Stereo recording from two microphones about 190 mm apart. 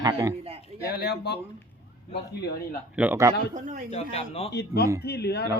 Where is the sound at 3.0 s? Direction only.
10° right (ahead or behind).